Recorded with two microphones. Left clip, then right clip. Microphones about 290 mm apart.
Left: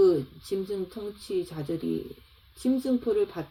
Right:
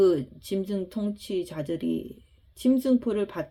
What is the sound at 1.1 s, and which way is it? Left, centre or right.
Speech, right.